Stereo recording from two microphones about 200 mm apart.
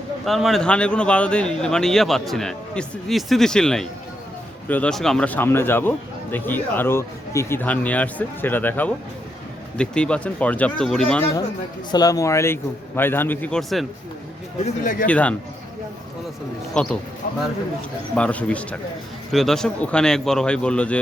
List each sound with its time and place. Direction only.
0.3 s speech: centre (ahead or behind)
11.9 s speech: 20° left (ahead or behind); by 13.8 s centre (ahead or behind)
14.6 s speech: 40° left (ahead or behind)
15.0 s speech: 5° left (ahead or behind)
16.8 s speech: 5° left (ahead or behind)
18.1 s speech: 5° left (ahead or behind)